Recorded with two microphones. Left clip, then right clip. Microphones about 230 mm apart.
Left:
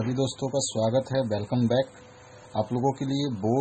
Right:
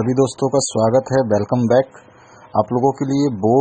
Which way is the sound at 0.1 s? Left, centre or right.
Right.